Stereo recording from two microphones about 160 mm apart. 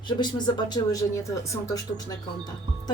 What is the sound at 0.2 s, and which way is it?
Speech, 25° left (ahead or behind).